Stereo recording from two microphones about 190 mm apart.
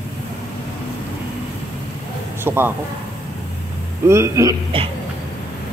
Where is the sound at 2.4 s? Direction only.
10° right (ahead or behind).